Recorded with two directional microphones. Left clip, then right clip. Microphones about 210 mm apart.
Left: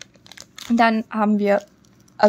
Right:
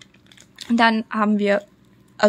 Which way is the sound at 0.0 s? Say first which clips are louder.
Left 6 dB; 40° left (ahead or behind).